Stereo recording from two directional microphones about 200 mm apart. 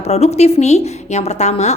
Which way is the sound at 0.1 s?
30° left (ahead or behind).